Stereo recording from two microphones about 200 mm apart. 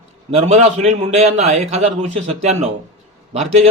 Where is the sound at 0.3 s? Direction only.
30° right (ahead or behind).